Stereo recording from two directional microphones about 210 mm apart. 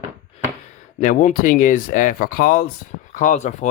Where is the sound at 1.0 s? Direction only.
35° left (ahead or behind).